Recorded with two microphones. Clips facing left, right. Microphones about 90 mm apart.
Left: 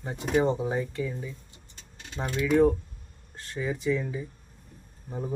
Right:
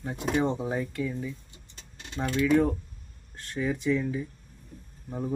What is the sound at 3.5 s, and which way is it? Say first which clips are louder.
Speech: right 1 dB; centre (ahead or behind).